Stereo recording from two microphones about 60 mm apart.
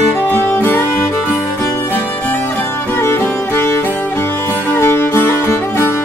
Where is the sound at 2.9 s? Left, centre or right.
Left.